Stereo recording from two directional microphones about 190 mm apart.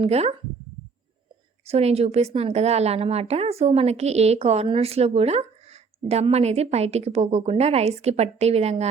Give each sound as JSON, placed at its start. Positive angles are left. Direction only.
{"t": 0.0, "sound": "a woman's voice", "side_deg": -35}
{"t": 1.6, "sound": "a woman's voice", "side_deg": -35}